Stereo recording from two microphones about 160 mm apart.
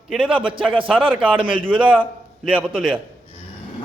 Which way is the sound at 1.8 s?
10° right (ahead or behind).